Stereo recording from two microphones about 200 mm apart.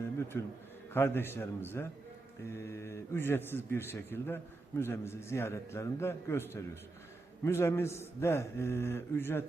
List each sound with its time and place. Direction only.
0.3 s a man's voice: 10° left (ahead or behind)